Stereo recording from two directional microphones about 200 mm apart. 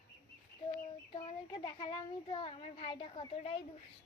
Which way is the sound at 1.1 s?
25° left (ahead or behind).